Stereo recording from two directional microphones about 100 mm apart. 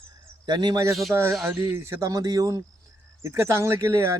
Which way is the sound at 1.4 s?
25° right (ahead or behind).